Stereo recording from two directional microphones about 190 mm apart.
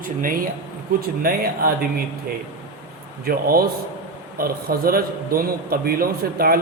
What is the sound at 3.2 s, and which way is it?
A man's voice, 55° right (ahead or behind).